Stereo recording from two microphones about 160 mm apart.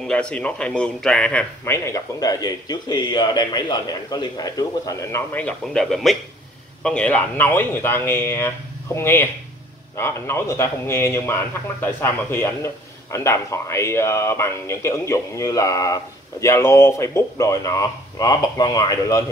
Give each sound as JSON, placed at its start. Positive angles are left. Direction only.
{"t": 0.0, "sound": "speech", "side_deg": 5}
{"t": 1.6, "sound": "speech", "side_deg": 15}
{"t": 5.3, "sound": "speech", "side_deg": 5}